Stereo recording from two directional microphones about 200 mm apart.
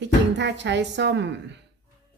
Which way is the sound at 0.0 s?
60° right (ahead or behind).